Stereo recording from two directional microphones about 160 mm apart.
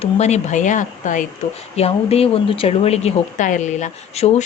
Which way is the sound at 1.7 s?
40° left (ahead or behind).